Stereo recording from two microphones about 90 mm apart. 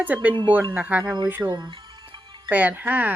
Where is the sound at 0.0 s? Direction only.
20° right (ahead or behind).